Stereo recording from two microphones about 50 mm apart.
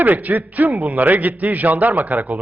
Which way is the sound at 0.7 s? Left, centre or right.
Right.